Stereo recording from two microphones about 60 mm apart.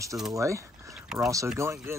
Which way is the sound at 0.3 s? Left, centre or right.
Right.